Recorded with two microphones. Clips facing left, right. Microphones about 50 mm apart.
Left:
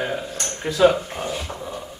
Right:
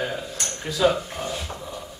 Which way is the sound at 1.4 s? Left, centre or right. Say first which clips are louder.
Left 3 dB; left.